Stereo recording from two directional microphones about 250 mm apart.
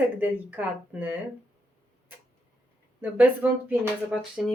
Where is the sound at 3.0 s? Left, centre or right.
Centre.